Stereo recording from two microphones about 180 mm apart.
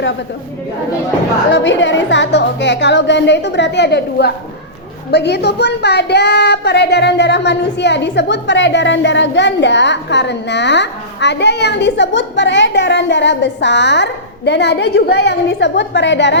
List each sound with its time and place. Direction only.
1.5 s speech: 85° left